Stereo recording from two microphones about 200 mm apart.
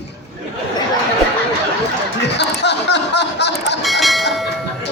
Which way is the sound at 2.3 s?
60° left (ahead or behind).